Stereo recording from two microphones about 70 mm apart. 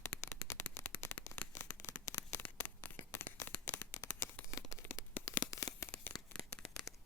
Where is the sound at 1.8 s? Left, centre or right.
Left.